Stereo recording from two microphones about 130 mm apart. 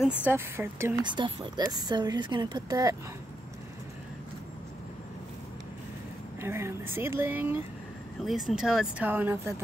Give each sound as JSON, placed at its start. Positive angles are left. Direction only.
{"t": 0.3, "sound": "speech", "side_deg": -20}
{"t": 1.0, "sound": "speech", "side_deg": -35}
{"t": 6.4, "sound": "speech", "side_deg": -20}
{"t": 8.2, "sound": "speech", "side_deg": 0}